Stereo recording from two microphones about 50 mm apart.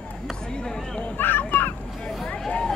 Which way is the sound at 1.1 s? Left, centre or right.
Left.